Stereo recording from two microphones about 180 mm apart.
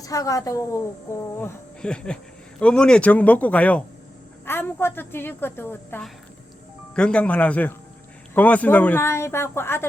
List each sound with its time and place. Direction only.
0.0 s a woman's voice: 20° left (ahead or behind)
1.8 s a woman's voice: 5° left (ahead or behind)